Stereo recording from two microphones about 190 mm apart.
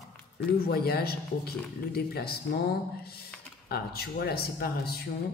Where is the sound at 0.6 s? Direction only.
55° left (ahead or behind).